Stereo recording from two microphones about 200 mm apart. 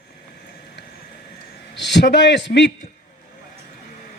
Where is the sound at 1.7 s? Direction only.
60° left (ahead or behind).